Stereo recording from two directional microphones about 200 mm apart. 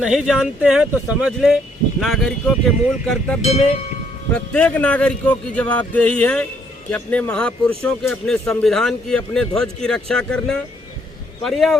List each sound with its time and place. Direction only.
0.0 s a man's voice: 5° right (ahead or behind)
3.4 s speech: 30° left (ahead or behind)
4.4 s a man's voice: 5° left (ahead or behind)